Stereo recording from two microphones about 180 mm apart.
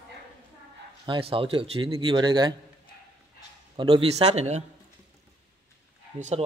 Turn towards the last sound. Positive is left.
turn(degrees=-40)  # may be behind; listen again after turning